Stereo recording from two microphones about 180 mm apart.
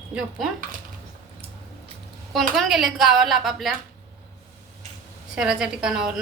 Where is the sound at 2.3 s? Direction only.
Centre (ahead or behind).